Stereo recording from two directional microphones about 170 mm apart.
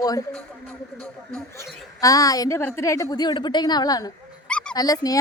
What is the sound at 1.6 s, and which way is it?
A woman's voice, 20° left (ahead or behind).